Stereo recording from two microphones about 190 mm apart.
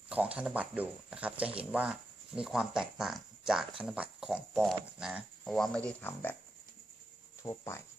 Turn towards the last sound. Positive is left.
turn(degrees=15)  # may be behind; listen again after turning